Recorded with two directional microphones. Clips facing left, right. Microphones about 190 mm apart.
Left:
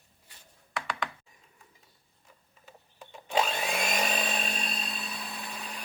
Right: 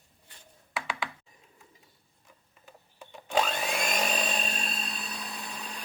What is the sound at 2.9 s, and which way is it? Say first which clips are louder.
Blender: right 1 dB; centre (ahead or behind).